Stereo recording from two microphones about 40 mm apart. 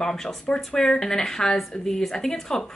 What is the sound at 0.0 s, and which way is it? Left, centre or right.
A woman's voice, centre.